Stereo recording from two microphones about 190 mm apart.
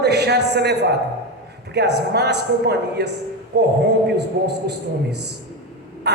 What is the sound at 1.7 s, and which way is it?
A woman's voice, 60° right (ahead or behind).